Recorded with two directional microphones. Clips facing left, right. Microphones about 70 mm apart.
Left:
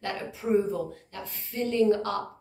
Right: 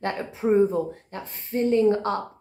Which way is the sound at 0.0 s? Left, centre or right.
Right.